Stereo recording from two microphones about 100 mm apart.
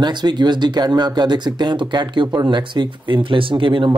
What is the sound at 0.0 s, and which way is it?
Speech, 45° right (ahead or behind).